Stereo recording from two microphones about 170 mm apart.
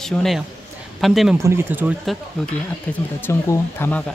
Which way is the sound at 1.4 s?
15° right (ahead or behind).